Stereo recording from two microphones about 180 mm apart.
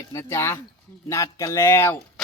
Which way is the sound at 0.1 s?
15° left (ahead or behind).